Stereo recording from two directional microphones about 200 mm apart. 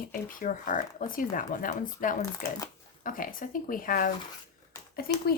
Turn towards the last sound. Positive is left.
turn(degrees=50)  # may be behind; listen again after turning